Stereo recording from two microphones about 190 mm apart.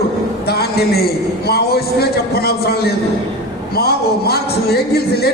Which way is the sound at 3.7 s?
55° left (ahead or behind).